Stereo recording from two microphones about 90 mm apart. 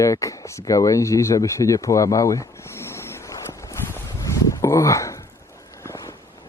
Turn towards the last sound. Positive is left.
turn(degrees=40)  # may be behind; listen again after turning